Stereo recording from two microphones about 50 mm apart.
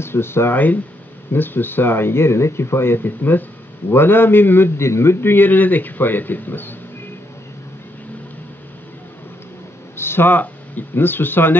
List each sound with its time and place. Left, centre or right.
0.0 s speech: left
1.3 s speech: left
4.7 s speech: left
9.9 s speech: left